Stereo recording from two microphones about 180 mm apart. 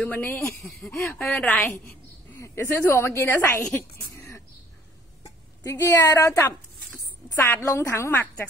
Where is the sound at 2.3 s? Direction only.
15° left (ahead or behind).